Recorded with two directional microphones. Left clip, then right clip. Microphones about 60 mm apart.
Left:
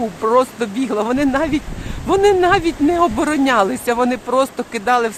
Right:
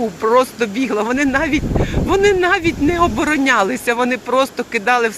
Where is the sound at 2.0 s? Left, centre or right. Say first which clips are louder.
Left 1 dB; left.